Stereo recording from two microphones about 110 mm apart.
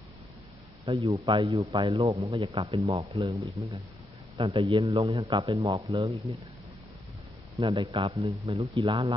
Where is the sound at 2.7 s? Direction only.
65° right (ahead or behind).